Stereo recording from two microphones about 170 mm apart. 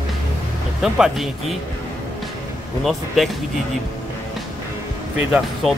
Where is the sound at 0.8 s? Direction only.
Centre (ahead or behind).